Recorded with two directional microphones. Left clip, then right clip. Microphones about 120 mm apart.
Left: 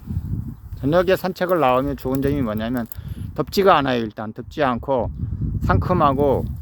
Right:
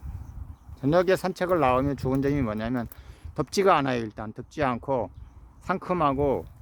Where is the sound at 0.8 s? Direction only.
20° left (ahead or behind).